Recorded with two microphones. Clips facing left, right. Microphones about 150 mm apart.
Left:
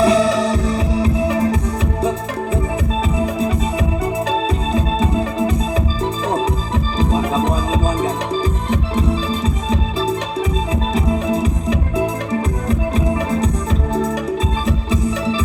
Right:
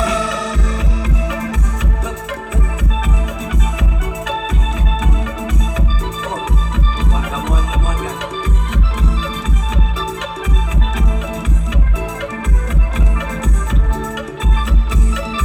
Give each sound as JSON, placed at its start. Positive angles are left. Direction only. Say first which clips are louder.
{"t": 0.0, "sound": "music", "louder": "left 6 dB", "side_deg": 35}
{"t": 4.7, "sound": "music", "louder": "left 5 dB", "side_deg": 30}
{"t": 7.0, "sound": "music", "louder": "left 9 dB", "side_deg": 35}
{"t": 10.9, "sound": "music", "louder": "left 8 dB", "side_deg": 35}